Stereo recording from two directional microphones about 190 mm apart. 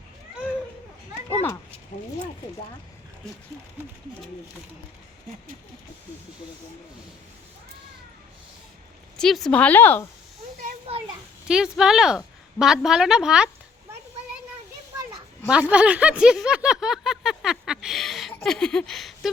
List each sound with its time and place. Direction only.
9.1 s speech: centre (ahead or behind)
10.6 s a child's voice: 35° right (ahead or behind)
11.4 s speech: 5° right (ahead or behind)
15.4 s speech: 5° right (ahead or behind)
18.3 s a sound: 5° left (ahead or behind)